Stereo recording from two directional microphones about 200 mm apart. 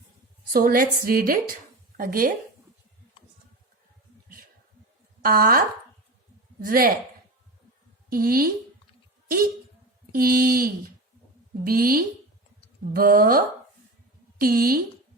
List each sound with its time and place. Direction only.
0.5 s a woman's voice: 45° right (ahead or behind)
5.2 s a woman's voice: 45° right (ahead or behind)
8.1 s a woman's voice: 45° right (ahead or behind)
10.1 s a woman's voice: 45° right (ahead or behind)